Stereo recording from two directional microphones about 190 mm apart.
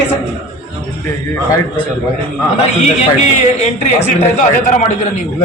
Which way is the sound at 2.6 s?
35° left (ahead or behind).